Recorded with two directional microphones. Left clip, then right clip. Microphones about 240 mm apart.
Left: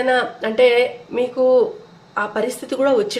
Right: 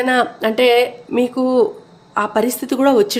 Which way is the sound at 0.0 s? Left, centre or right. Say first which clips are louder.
Right 2 dB; right.